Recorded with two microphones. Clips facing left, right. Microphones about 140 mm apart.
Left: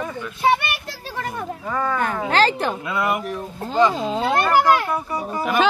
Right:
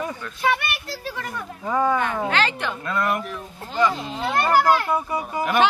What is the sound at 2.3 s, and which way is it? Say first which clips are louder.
Speech: left 5 dB; 35° left (ahead or behind).